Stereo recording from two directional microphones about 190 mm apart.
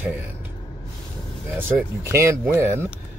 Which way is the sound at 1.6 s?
10° right (ahead or behind).